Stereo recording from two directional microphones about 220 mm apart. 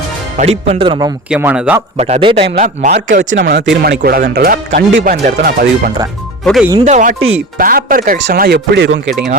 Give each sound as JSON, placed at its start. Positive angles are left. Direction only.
{"t": 0.3, "sound": "speech", "side_deg": -30}
{"t": 1.3, "sound": "speech", "side_deg": -5}
{"t": 2.0, "sound": "speech", "side_deg": -30}
{"t": 2.6, "sound": "speech", "side_deg": -35}
{"t": 3.3, "sound": "speech", "side_deg": -50}
{"t": 6.4, "sound": "speech", "side_deg": 0}
{"t": 6.8, "sound": "speech", "side_deg": -35}